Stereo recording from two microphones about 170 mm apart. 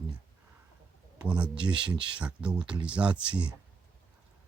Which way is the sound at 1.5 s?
30° right (ahead or behind).